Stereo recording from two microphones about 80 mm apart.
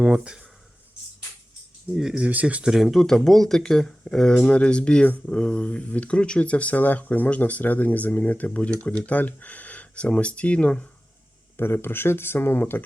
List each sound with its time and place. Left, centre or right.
0.0 s speech: centre
2.0 s speech: centre
2.6 s speech: centre
11.5 s speech: left